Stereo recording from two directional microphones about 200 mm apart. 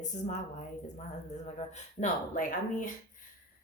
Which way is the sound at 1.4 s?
35° left (ahead or behind).